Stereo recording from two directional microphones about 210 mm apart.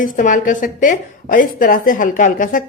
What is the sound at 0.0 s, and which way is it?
Speech, 40° left (ahead or behind).